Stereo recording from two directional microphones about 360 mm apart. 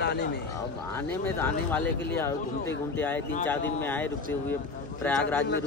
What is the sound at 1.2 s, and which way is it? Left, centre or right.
Speech, centre.